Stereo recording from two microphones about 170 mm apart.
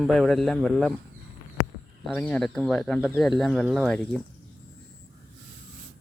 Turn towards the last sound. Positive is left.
turn(degrees=5)  # may be behind; listen again after turning